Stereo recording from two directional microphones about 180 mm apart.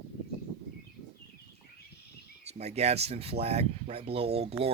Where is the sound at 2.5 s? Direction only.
35° right (ahead or behind).